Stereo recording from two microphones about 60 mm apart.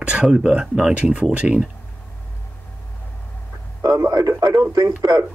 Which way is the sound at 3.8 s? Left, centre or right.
Right.